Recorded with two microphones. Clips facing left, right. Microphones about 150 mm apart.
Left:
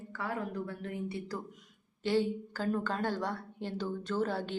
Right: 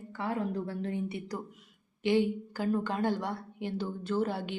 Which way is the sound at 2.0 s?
15° right (ahead or behind).